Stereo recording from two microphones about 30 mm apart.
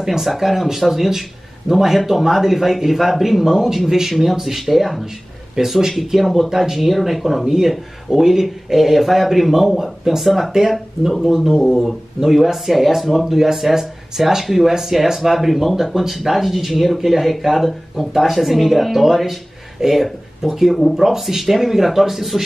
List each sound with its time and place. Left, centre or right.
0.0 s speech: centre
4.1 s speech: centre
20.9 s speech: centre